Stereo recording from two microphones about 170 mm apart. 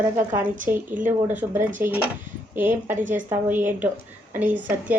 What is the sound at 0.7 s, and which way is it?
A woman's voice, 15° right (ahead or behind).